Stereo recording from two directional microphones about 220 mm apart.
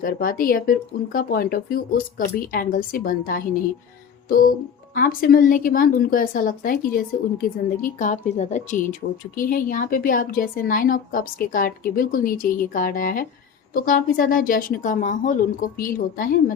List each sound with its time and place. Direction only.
0.0 s a woman's voice: 40° left (ahead or behind)